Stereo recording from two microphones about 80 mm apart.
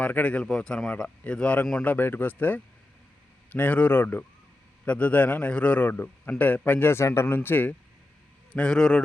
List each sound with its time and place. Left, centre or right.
0.0 s a man's voice: centre; by 7.3 s left
7.3 s a man's voice: left
8.5 s a man's voice: centre